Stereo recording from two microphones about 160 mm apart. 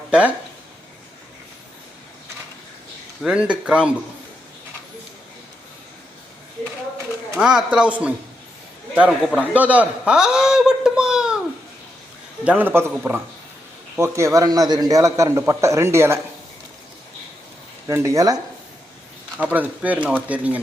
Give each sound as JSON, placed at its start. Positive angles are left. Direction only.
{"t": 0.1, "sound": "speech", "side_deg": -10}
{"t": 3.2, "sound": "speech", "side_deg": -5}
{"t": 7.3, "sound": "a man's voice", "side_deg": -5}
{"t": 9.6, "sound": "a sound", "side_deg": -10}
{"t": 12.5, "sound": "speech", "side_deg": -10}
{"t": 13.9, "sound": "a man's voice", "side_deg": -15}
{"t": 17.8, "sound": "a man's voice", "side_deg": -20}
{"t": 19.4, "sound": "speech", "side_deg": -10}